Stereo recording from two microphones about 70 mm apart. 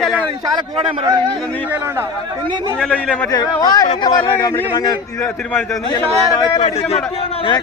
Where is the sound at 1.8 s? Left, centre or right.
Right.